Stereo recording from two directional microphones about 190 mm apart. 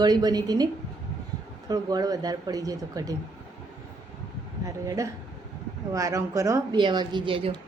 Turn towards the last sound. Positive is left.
turn(degrees=-30)  # may be behind; listen again after turning